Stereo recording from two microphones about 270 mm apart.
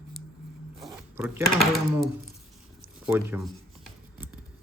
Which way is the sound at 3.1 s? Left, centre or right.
Centre.